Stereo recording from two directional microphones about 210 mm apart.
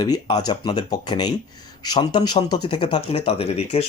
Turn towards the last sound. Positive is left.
turn(degrees=30)  # may be behind; listen again after turning